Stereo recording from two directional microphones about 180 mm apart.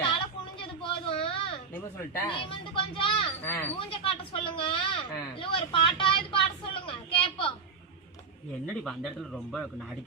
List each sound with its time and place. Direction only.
0.8 s a sound: 30° left (ahead or behind)
2.2 s a woman's voice: 30° left (ahead or behind)
3.4 s speech: 10° left (ahead or behind)
3.8 s a woman's voice: 30° left (ahead or behind)
8.8 s speech: centre (ahead or behind)